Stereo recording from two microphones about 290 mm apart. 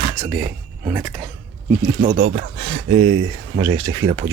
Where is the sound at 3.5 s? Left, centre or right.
Centre.